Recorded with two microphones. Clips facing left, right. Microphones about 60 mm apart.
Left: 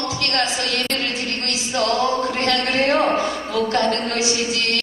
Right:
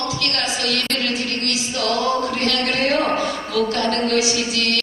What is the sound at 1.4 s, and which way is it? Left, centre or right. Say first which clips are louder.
Singing: left 3 dB; left.